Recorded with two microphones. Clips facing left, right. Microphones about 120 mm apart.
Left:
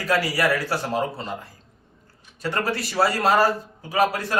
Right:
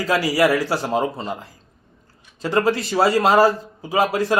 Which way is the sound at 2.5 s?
20° right (ahead or behind).